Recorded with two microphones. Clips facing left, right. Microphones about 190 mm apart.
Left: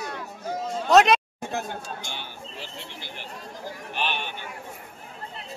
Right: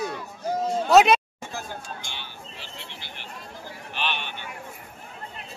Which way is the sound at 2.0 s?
45° left (ahead or behind).